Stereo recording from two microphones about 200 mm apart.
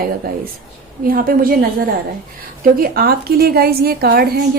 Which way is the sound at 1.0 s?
45° right (ahead or behind).